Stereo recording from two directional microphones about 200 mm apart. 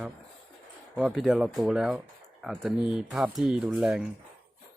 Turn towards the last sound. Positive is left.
turn(degrees=-5)  # may be behind; listen again after turning